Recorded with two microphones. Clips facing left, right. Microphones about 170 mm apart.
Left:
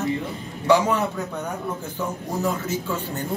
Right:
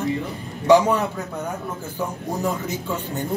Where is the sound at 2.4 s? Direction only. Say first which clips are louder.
Left 1 dB; 15° right (ahead or behind).